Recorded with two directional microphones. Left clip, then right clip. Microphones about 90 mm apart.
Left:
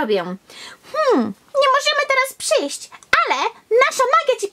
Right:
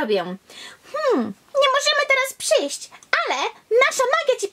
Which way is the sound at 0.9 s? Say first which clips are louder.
Left 4 dB; 20° left (ahead or behind).